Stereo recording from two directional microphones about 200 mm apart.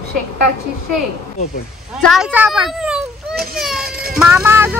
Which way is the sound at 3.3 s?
50° right (ahead or behind).